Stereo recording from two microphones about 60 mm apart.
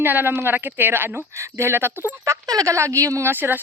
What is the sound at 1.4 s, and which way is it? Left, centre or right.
Speech, right.